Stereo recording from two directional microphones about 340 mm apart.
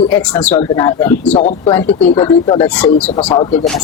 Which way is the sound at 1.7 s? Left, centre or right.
Centre.